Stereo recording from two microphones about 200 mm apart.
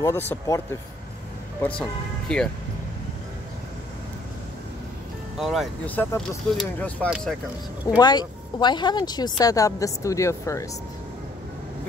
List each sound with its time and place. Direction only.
0.0 s speech: 15° left (ahead or behind)
1.8 s speech: 5° left (ahead or behind)
5.4 s speech: centre (ahead or behind)
8.0 s speech: 20° left (ahead or behind)